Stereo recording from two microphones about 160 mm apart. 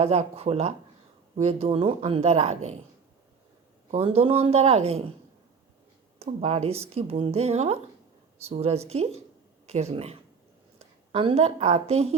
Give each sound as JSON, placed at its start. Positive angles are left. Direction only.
{"t": 0.0, "sound": "speech", "side_deg": -40}
{"t": 3.9, "sound": "speech", "side_deg": -40}
{"t": 6.1, "sound": "speech", "side_deg": -40}